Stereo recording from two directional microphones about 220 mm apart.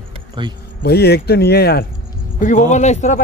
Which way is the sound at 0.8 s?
45° left (ahead or behind).